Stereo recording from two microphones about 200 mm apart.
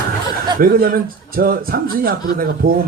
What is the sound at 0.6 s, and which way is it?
Speech, 50° right (ahead or behind).